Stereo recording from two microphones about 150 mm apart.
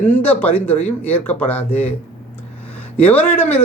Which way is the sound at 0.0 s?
10° left (ahead or behind).